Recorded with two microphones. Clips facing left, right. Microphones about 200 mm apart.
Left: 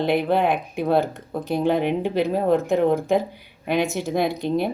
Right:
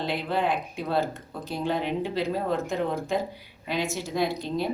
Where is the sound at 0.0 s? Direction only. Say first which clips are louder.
Left 7 dB; 55° left (ahead or behind).